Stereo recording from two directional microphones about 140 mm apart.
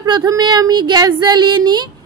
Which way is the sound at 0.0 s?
25° right (ahead or behind).